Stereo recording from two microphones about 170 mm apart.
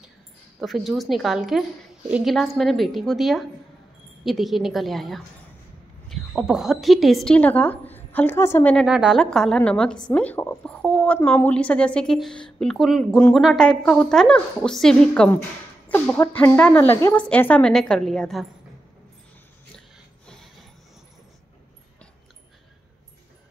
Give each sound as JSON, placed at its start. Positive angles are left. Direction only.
{"t": 0.6, "sound": "a woman's voice", "side_deg": 0}
{"t": 8.7, "sound": "a woman's voice", "side_deg": -5}
{"t": 10.1, "sound": "a sound", "side_deg": 10}
{"t": 11.1, "sound": "a woman's voice", "side_deg": 10}